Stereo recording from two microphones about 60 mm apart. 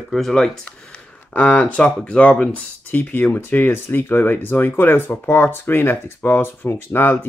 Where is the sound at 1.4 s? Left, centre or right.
Centre.